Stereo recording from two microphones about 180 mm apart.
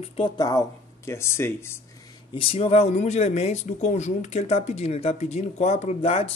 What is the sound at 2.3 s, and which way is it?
Speech, 30° left (ahead or behind).